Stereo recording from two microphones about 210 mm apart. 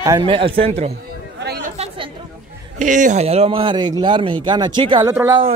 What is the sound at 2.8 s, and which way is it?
Speech, 35° right (ahead or behind).